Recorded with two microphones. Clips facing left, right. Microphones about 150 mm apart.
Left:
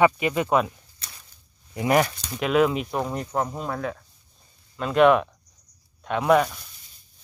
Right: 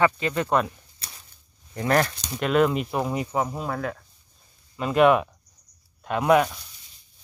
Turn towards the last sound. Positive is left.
turn(degrees=0)  # may be behind; listen again after turning